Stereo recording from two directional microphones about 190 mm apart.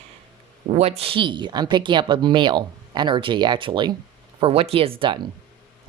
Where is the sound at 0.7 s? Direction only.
35° right (ahead or behind).